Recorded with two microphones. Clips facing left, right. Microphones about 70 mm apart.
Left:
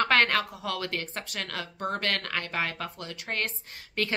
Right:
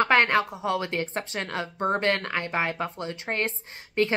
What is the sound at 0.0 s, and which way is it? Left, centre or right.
A woman's voice, right.